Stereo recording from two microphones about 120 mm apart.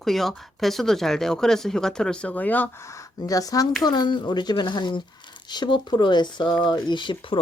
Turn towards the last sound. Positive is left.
turn(degrees=40)  # may be behind; listen again after turning